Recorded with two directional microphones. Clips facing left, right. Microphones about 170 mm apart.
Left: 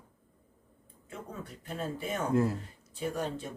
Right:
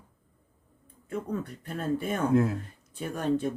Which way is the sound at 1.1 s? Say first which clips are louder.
Right 10 dB; 55° right (ahead or behind).